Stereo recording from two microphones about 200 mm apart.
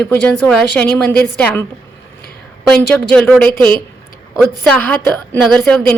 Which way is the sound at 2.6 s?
5° left (ahead or behind).